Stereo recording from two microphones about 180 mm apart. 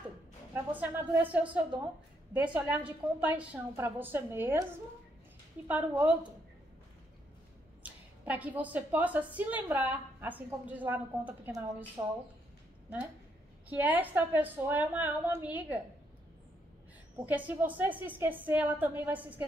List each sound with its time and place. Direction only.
0.7 s a woman's voice: 10° right (ahead or behind)
5.7 s a woman's voice: 10° right (ahead or behind)
7.8 s a woman's voice: 10° right (ahead or behind)
12.0 s speech: 20° right (ahead or behind)
13.7 s a woman's voice: 10° right (ahead or behind)
17.3 s a woman's voice: 10° right (ahead or behind)